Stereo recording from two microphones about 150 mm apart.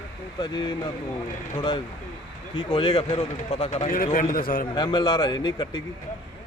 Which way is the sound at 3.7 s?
55° left (ahead or behind).